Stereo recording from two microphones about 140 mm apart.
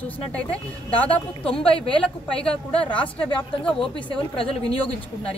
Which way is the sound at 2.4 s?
10° left (ahead or behind).